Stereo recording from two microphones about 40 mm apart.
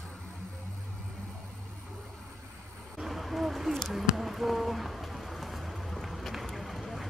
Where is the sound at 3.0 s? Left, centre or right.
Centre.